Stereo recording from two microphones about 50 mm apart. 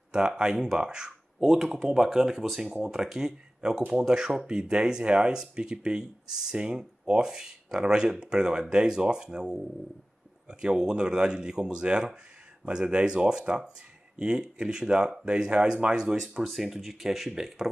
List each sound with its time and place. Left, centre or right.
0.1 s speech: centre